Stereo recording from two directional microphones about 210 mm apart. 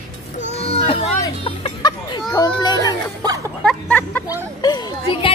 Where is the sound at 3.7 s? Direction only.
5° left (ahead or behind).